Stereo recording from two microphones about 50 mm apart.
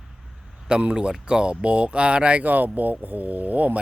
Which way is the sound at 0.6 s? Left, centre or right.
Centre.